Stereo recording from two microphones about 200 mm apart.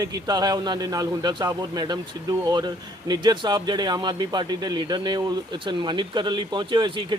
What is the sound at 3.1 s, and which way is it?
Speech, 20° right (ahead or behind).